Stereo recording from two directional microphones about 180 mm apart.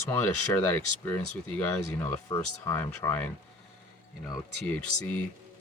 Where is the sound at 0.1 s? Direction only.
10° left (ahead or behind).